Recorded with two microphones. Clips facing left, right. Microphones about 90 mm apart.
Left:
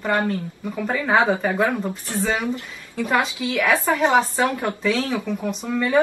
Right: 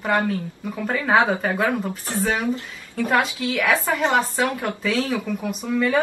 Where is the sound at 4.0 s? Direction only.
15° left (ahead or behind).